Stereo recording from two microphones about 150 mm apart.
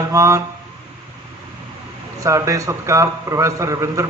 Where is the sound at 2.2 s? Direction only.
20° right (ahead or behind).